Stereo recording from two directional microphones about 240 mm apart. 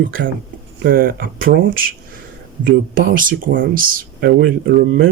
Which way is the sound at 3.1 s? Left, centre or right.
Right.